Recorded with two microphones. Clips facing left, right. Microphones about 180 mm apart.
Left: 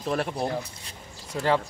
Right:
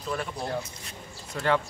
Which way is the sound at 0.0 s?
60° left (ahead or behind).